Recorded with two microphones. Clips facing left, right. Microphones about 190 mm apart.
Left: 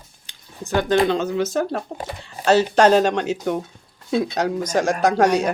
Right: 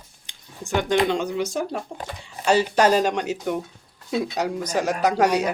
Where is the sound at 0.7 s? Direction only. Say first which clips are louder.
Left 3 dB; 15° right (ahead or behind).